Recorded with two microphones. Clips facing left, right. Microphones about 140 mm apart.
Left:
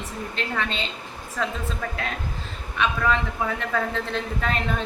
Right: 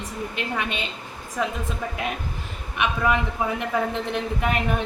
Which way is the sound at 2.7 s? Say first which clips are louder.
Right 1 dB; 15° right (ahead or behind).